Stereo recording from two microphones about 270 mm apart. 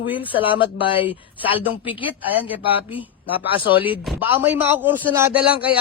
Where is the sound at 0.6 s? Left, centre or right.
Centre.